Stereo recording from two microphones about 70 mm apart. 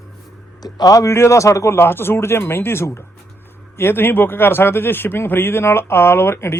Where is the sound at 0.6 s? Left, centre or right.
Left.